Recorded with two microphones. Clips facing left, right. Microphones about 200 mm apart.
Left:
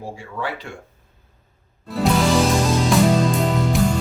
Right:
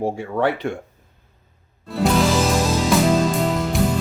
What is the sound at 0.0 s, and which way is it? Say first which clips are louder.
Speech: right 9 dB; 60° right (ahead or behind).